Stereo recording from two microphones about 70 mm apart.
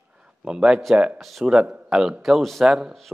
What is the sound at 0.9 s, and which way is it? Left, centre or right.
A man's voice, centre.